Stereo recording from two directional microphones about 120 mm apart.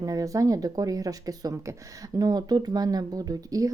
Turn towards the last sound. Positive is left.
turn(degrees=-30)  # may be behind; listen again after turning